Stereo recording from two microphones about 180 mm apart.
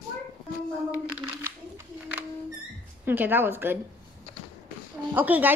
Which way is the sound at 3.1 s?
10° right (ahead or behind).